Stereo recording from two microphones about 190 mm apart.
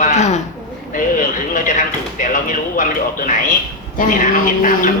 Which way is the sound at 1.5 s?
45° left (ahead or behind).